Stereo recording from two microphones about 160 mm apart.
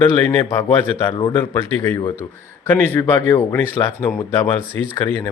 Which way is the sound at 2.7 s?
15° left (ahead or behind).